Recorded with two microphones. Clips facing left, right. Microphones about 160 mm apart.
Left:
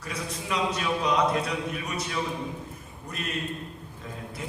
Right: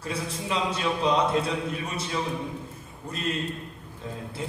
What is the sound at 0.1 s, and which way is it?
A man's voice, 30° right (ahead or behind).